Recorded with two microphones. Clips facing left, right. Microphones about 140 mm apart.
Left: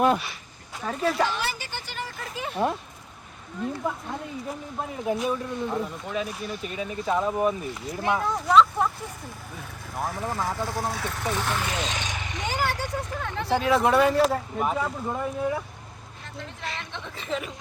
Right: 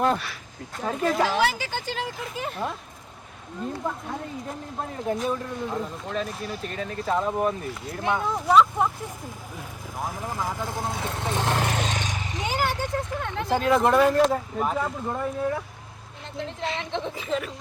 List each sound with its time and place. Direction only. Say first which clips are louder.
0.0 s speech: left 2 dB; 5° left (ahead or behind)
1.3 s speech: right 7 dB; 90° right
2.1 s speech: left 1 dB; centre (ahead or behind)
3.8 s speech: even; centre (ahead or behind)
9.9 s speech: left 2 dB; 15° right (ahead or behind)
11.5 s a sound: right 3 dB; 50° right (ahead or behind)
12.4 s speech: right 1 dB; 5° right (ahead or behind)
16.6 s speech: right 7 dB; 25° right (ahead or behind)
17.2 s speech: left 2 dB; centre (ahead or behind)